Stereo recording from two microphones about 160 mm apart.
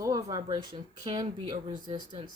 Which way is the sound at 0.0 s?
20° right (ahead or behind).